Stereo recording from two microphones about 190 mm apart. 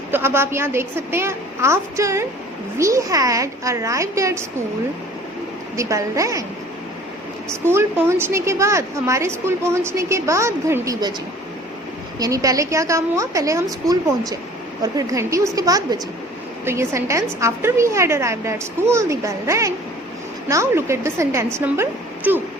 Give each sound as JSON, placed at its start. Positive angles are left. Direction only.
{"t": 0.1, "sound": "a woman's voice", "side_deg": -10}
{"t": 5.7, "sound": "a woman's voice", "side_deg": -15}
{"t": 7.5, "sound": "a woman's voice", "side_deg": -15}
{"t": 12.2, "sound": "a woman's voice", "side_deg": -20}